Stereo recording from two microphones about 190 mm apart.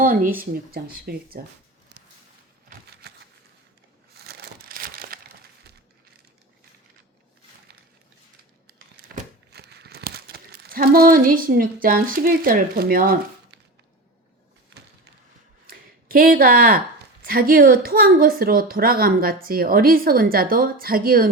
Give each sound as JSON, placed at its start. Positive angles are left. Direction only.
{"t": 0.0, "sound": "a woman's voice", "side_deg": -45}
{"t": 1.9, "sound": "a sound", "side_deg": -65}
{"t": 4.2, "sound": "crumpling", "side_deg": -55}
{"t": 9.5, "sound": "crumpling", "side_deg": -60}
{"t": 15.6, "sound": "a sound", "side_deg": -50}
{"t": 17.2, "sound": "a woman's voice", "side_deg": -50}